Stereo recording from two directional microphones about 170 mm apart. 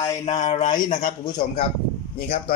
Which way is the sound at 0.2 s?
40° left (ahead or behind).